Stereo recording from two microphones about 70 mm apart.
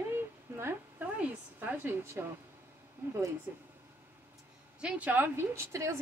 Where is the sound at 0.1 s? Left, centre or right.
Right.